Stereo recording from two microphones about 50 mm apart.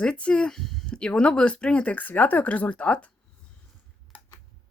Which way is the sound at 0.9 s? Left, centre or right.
Centre.